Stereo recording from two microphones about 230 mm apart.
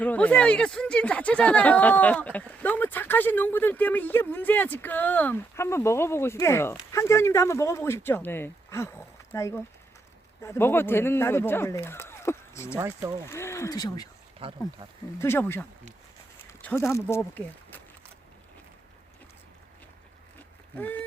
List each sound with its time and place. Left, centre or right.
0.0 s speech: centre
12.7 s speech: centre
13.3 s speech: centre
15.2 s speech: centre
20.7 s speech: centre